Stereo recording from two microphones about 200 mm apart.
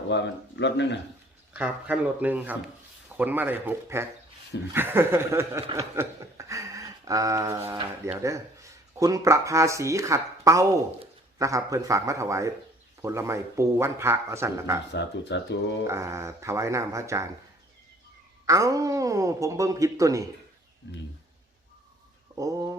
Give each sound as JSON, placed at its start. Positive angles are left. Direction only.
{"t": 0.1, "sound": "speech", "side_deg": 65}
{"t": 1.5, "sound": "speech", "side_deg": -10}
{"t": 5.7, "sound": "a sound", "side_deg": -15}
{"t": 7.7, "sound": "speech", "side_deg": -15}
{"t": 14.9, "sound": "speech", "side_deg": 60}
{"t": 15.9, "sound": "speech", "side_deg": -15}
{"t": 18.4, "sound": "speech", "side_deg": -15}